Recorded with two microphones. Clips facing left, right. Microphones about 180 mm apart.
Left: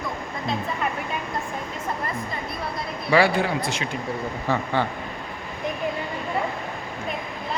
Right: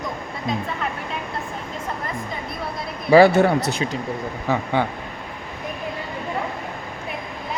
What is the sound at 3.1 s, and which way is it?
Speech, 40° right (ahead or behind).